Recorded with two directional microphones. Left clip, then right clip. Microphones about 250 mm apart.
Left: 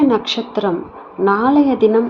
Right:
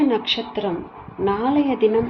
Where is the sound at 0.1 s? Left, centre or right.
Left.